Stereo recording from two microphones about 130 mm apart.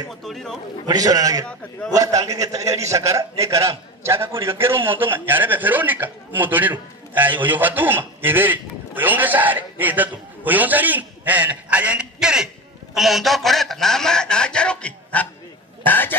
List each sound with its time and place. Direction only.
0.2 s a man's voice: centre (ahead or behind)
0.8 s a man's voice: 30° right (ahead or behind); by 16.2 s 15° left (ahead or behind)